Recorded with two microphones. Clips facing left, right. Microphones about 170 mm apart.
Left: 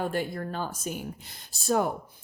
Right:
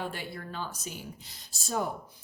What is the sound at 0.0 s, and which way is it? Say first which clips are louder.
Speech: left 7 dB; 45° left (ahead or behind).